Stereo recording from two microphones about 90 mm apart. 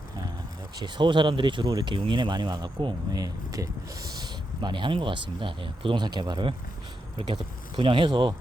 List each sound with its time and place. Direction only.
0.8 s speech: 60° right (ahead or behind)
7.2 s speech: 70° right (ahead or behind)